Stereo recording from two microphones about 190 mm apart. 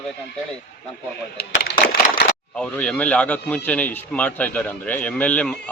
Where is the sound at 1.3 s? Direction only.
55° left (ahead or behind).